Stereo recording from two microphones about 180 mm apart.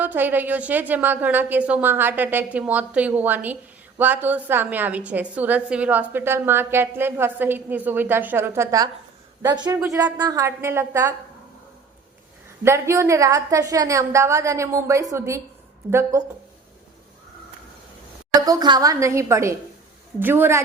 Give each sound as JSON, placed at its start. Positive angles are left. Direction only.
{"t": 0.0, "sound": "a woman's voice", "side_deg": -10}
{"t": 12.6, "sound": "a woman's voice", "side_deg": -15}
{"t": 18.3, "sound": "a woman's voice", "side_deg": -20}